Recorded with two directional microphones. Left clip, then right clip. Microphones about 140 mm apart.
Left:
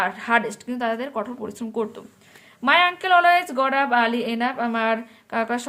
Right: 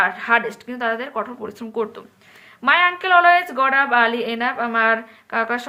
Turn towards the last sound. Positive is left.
turn(degrees=45)  # may be behind; listen again after turning